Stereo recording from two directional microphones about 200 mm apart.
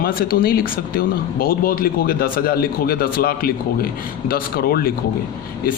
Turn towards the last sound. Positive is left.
turn(degrees=50)  # may be behind; listen again after turning